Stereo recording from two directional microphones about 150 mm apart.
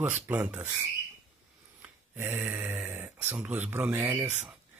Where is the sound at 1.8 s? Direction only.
15° right (ahead or behind).